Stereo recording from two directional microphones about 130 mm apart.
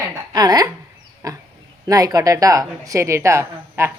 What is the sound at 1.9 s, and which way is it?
A woman's voice, 30° right (ahead or behind).